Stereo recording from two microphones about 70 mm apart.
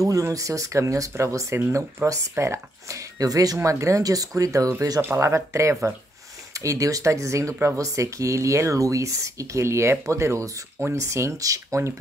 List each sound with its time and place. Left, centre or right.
0.0 s speech: right
3.5 s speech: right
5.1 s speech: right